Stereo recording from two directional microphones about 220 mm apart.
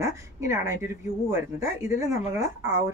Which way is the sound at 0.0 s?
15° right (ahead or behind).